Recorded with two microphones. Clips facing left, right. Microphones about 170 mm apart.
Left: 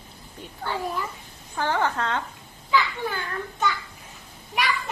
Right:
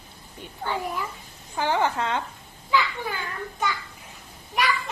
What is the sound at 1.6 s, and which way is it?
Speech, 15° right (ahead or behind).